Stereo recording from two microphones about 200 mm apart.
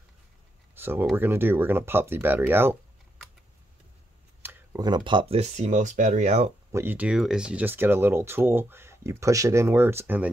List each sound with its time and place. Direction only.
0.7 s speech: 10° right (ahead or behind)
4.4 s a sound: 10° right (ahead or behind)
4.8 s speech: 25° right (ahead or behind)
6.7 s speech: 10° right (ahead or behind)